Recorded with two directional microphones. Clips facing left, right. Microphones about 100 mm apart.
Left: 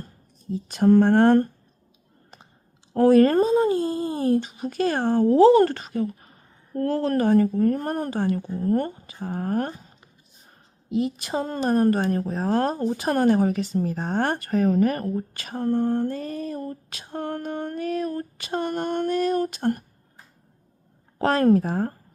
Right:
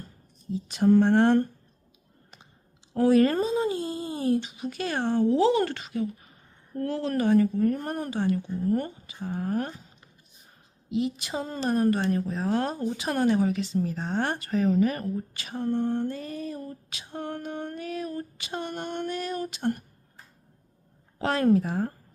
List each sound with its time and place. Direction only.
0.5 s a woman's voice: 50° left (ahead or behind)
2.9 s a woman's voice: 45° left (ahead or behind)
10.8 s a woman's voice: 40° left (ahead or behind)
21.2 s a woman's voice: 45° left (ahead or behind)